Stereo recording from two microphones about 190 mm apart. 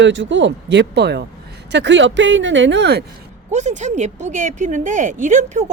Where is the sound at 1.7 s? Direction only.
65° right (ahead or behind).